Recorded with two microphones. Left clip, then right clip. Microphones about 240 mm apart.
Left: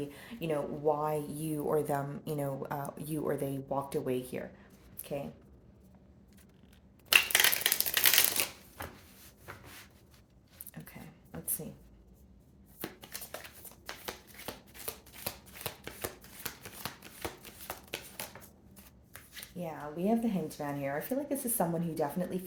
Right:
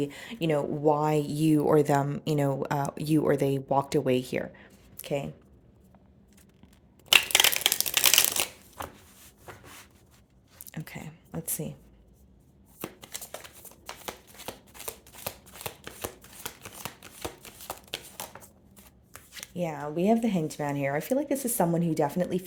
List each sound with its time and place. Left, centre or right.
0.0 s speech: right
7.1 s typewriter: right
8.8 s a sound: right
10.7 s a sound: right
11.4 s speech: right
12.8 s shuffling cards: right
13.8 s a sound: right
15.2 s shuffling cards: right
19.5 s speech: right